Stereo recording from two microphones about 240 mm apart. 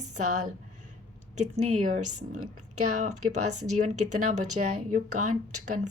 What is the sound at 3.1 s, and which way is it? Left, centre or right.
Speech, right.